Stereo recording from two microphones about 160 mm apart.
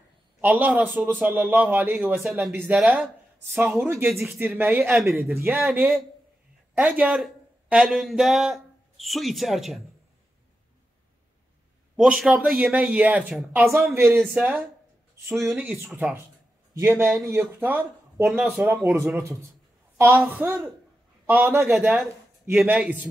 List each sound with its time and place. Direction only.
0.4 s a man's voice: 10° right (ahead or behind)
12.0 s speech: 5° right (ahead or behind)